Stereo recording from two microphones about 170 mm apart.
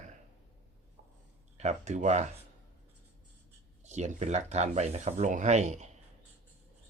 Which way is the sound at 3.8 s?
45° right (ahead or behind).